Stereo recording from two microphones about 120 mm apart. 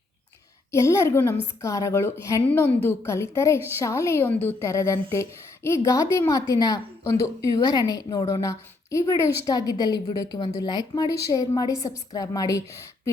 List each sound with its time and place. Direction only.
0.7 s a woman's voice: 25° left (ahead or behind)